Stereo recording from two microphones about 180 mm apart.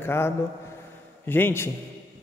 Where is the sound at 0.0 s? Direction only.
15° left (ahead or behind).